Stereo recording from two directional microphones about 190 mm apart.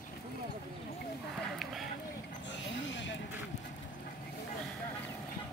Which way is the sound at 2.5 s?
75° left (ahead or behind).